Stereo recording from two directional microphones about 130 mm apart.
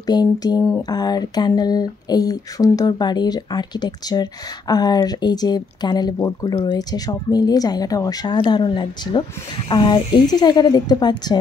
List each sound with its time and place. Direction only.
0.0 s speech: 30° left (ahead or behind)